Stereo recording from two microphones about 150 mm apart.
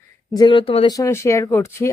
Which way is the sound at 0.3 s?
30° left (ahead or behind).